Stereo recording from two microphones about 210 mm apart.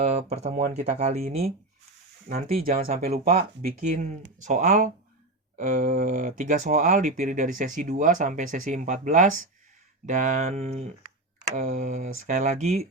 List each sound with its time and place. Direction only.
0.0 s speech: 30° right (ahead or behind)
2.6 s speech: 45° right (ahead or behind)
3.1 s speech: 35° right (ahead or behind)